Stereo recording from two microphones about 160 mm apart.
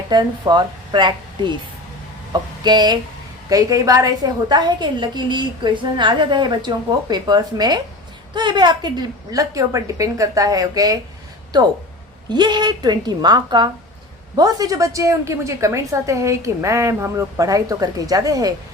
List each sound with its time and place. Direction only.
0.1 s a woman's voice: 25° right (ahead or behind)
12.3 s a woman's voice: 25° right (ahead or behind)